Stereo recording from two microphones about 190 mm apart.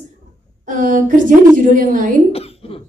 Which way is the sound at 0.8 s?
45° right (ahead or behind).